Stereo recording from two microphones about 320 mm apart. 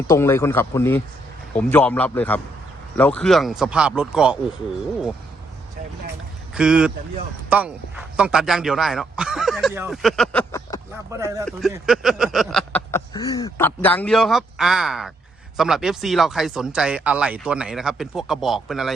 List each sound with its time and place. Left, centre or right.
0.1 s a man's voice: centre
6.5 s speech: centre
11.1 s speech: centre